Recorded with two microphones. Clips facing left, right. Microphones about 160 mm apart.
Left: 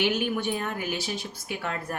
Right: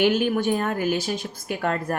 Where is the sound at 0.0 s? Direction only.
45° right (ahead or behind).